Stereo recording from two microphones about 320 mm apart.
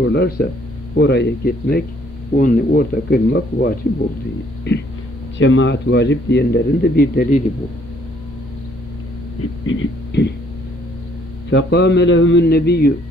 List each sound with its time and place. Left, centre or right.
0.0 s speech: left
9.7 s speech: left
11.5 s speech: left